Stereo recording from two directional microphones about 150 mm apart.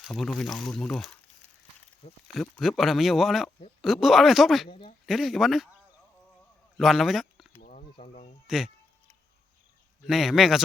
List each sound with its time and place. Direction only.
0.0 s speech: centre (ahead or behind)
2.2 s speech: centre (ahead or behind)
6.7 s a man's voice: centre (ahead or behind)
7.6 s a sound: 55° left (ahead or behind)
8.0 s speech: 55° left (ahead or behind)
8.4 s speech: 5° right (ahead or behind)
10.1 s speech: centre (ahead or behind)